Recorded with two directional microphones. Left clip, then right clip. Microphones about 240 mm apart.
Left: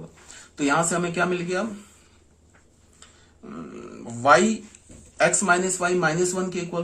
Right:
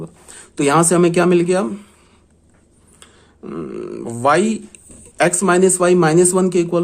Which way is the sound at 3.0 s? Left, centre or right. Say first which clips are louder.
Right 9 dB; right.